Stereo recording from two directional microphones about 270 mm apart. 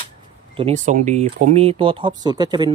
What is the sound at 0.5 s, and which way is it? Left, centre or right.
Speech, right.